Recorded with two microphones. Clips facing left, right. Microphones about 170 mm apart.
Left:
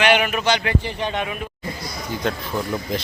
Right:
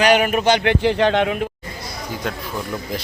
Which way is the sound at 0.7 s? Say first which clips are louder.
Right 8 dB; 90° right.